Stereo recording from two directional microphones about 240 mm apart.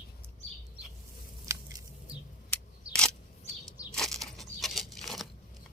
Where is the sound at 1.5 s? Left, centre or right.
Centre.